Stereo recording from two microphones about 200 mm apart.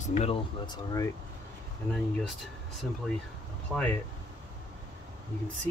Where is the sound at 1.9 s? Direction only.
Centre (ahead or behind).